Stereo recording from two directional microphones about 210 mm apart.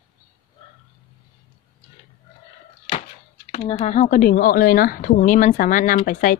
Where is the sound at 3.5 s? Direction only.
25° left (ahead or behind).